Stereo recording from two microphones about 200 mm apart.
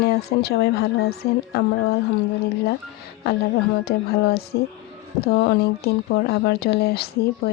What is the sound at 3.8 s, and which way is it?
Speech, 50° left (ahead or behind).